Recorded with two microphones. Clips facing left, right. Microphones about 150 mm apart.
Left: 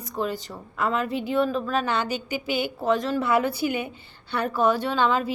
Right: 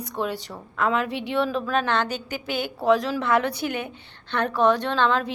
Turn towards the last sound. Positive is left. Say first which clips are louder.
# even
turn(degrees=5)  # may be behind; listen again after turning